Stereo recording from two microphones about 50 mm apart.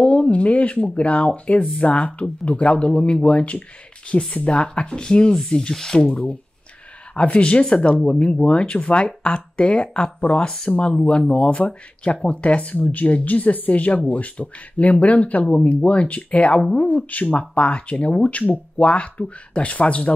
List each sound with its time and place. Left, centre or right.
0.0 s speech: left
6.0 s speech: left
7.6 s speech: centre